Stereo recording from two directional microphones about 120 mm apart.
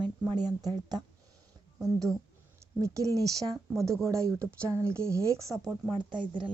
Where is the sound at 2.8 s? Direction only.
30° right (ahead or behind).